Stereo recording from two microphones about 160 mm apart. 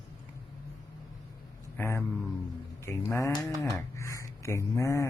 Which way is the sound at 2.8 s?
15° left (ahead or behind).